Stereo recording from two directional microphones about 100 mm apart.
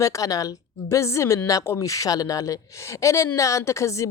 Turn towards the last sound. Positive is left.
turn(degrees=30)  # may be behind; listen again after turning